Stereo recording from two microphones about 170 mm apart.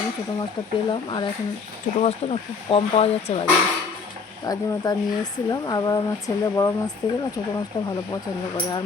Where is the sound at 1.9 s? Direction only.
35° left (ahead or behind).